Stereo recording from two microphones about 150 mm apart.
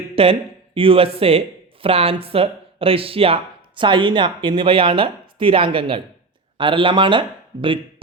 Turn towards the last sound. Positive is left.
turn(degrees=-30)  # may be behind; listen again after turning